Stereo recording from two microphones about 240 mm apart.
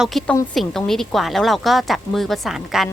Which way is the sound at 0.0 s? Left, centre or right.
Centre.